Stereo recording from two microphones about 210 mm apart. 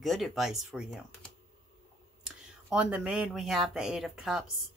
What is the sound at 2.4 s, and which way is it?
Speech, 5° right (ahead or behind).